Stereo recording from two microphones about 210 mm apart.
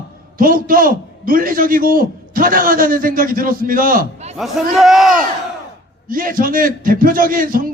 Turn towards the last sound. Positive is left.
turn(degrees=-40)  # may be behind; listen again after turning